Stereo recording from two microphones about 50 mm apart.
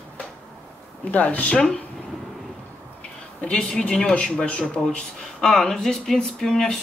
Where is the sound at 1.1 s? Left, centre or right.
Left.